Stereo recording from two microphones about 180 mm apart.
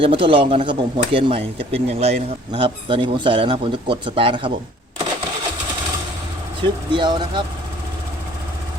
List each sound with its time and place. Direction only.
0.0 s speech: 30° right (ahead or behind)
6.6 s speech: 25° right (ahead or behind)